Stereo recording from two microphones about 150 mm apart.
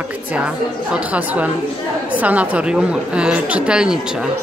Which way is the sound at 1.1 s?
10° right (ahead or behind).